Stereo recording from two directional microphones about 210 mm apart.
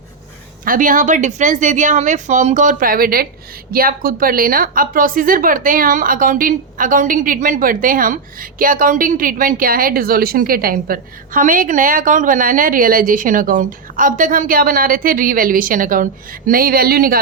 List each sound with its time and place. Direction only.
0.6 s a woman's voice: 40° right (ahead or behind)